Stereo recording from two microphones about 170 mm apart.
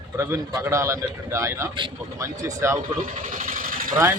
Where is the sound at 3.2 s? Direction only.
55° right (ahead or behind).